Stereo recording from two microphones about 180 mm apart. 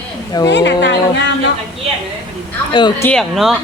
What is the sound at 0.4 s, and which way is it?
Speech, 75° left (ahead or behind).